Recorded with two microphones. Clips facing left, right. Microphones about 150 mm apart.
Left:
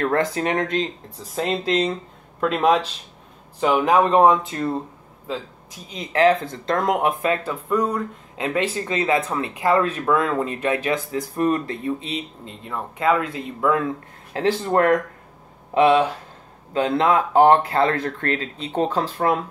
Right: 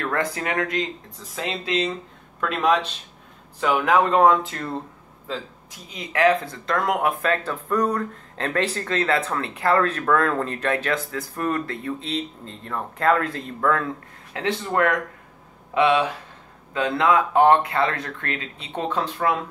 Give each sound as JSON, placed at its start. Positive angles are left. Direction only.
{"t": 0.0, "sound": "speech", "side_deg": 30}
{"t": 1.3, "sound": "speech", "side_deg": 40}
{"t": 2.4, "sound": "speech", "side_deg": 30}
{"t": 5.9, "sound": "speech", "side_deg": 25}
{"t": 14.3, "sound": "speech", "side_deg": 35}